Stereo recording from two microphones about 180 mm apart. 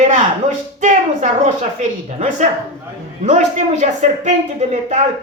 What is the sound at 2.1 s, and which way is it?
A woman's voice, 40° right (ahead or behind).